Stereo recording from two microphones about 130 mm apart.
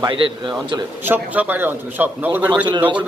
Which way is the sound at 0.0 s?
40° right (ahead or behind).